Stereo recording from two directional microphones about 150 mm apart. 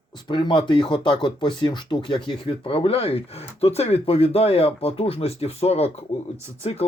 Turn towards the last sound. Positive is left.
turn(degrees=40)  # may be behind; listen again after turning